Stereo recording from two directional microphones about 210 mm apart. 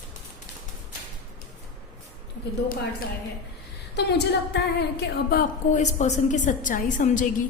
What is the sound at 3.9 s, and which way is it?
A woman's voice, 55° left (ahead or behind).